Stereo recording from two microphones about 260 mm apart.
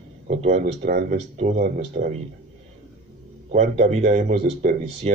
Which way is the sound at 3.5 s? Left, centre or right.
Right.